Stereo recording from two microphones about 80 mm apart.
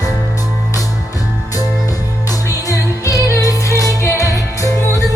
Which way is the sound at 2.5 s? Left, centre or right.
Left.